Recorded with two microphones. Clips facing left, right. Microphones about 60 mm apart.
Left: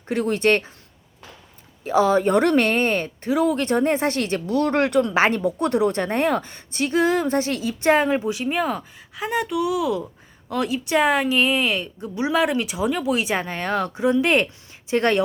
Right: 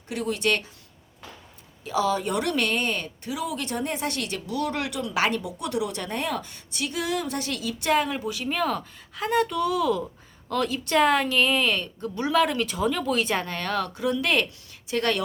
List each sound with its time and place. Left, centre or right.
0.1 s speech: left
1.8 s speech: left